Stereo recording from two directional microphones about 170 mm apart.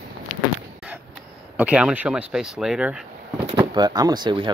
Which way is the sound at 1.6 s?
5° right (ahead or behind).